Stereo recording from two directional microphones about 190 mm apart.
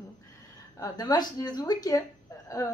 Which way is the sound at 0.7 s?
20° left (ahead or behind).